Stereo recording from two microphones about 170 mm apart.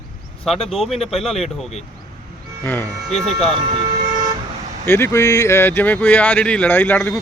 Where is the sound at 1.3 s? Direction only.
40° left (ahead or behind).